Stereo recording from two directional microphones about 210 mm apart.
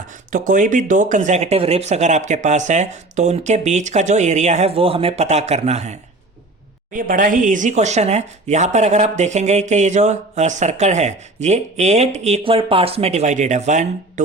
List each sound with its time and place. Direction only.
0.1 s speech: 40° right (ahead or behind)